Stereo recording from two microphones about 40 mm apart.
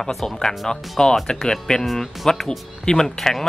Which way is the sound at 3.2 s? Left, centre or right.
Centre.